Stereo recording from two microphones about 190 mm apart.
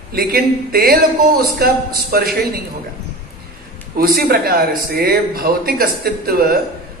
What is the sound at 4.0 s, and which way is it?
A man's voice, 55° right (ahead or behind).